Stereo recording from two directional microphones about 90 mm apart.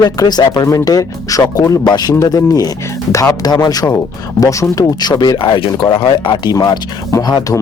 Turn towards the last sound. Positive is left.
turn(degrees=45)  # may be behind; listen again after turning